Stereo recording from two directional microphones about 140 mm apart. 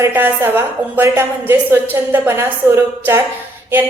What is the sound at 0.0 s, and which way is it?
A woman's voice, 15° right (ahead or behind).